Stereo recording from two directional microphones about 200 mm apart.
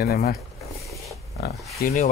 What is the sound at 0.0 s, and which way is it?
Speech, 50° left (ahead or behind).